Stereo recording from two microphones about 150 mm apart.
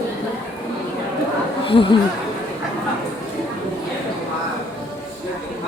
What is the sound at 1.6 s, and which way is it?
Speech, 35° left (ahead or behind).